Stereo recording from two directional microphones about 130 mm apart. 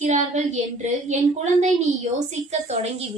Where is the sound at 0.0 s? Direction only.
75° right (ahead or behind).